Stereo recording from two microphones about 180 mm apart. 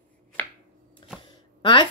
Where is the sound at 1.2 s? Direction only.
25° left (ahead or behind).